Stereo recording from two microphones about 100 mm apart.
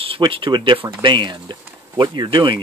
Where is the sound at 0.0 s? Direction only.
65° right (ahead or behind).